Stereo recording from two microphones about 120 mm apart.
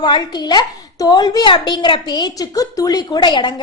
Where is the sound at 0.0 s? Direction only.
35° left (ahead or behind).